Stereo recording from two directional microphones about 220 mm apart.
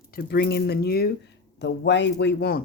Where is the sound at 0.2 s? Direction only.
45° left (ahead or behind).